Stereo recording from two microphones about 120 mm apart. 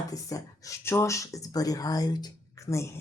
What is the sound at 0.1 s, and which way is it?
Speech, 30° left (ahead or behind).